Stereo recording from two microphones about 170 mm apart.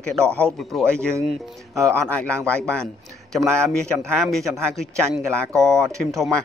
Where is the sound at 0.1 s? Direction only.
5° left (ahead or behind).